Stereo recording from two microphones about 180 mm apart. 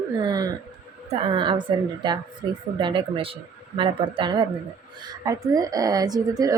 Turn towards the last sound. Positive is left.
turn(degrees=-20)  # may be behind; listen again after turning